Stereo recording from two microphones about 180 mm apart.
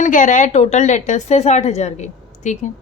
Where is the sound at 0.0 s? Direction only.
45° left (ahead or behind).